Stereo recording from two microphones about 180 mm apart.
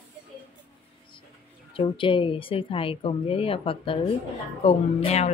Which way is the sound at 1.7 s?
30° left (ahead or behind).